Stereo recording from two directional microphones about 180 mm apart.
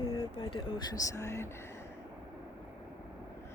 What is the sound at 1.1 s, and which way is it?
Speech, 15° left (ahead or behind).